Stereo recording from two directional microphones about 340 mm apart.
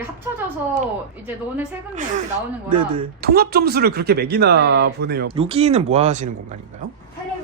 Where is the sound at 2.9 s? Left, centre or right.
Right.